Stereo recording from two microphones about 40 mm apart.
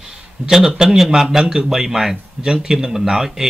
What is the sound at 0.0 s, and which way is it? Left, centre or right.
A man's voice, centre.